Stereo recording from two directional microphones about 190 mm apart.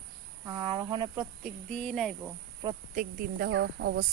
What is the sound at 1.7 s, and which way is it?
Speech, 5° left (ahead or behind).